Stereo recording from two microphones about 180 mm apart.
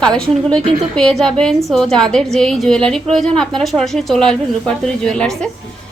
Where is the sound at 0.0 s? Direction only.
5° left (ahead or behind).